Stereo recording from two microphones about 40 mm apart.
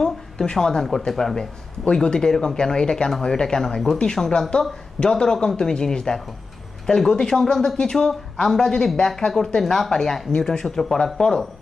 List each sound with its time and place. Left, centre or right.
0.5 s speech: centre
1.8 s speech: left